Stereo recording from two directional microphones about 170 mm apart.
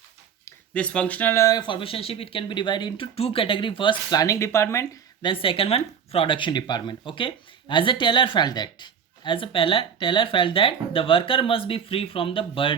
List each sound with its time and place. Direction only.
0.7 s speech: 5° left (ahead or behind)
5.2 s speech: 30° left (ahead or behind)